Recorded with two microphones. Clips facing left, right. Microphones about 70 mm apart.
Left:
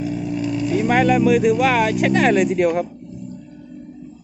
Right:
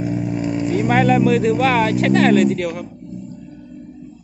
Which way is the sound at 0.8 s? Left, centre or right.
Centre.